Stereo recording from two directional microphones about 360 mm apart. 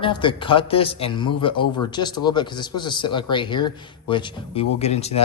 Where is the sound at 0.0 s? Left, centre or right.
Centre.